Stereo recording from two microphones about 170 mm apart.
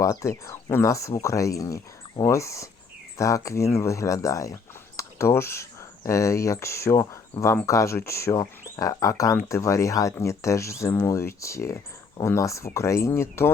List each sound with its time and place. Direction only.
0.0 s speech: 20° left (ahead or behind)